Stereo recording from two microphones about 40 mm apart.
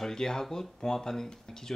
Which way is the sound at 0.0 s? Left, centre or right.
Centre.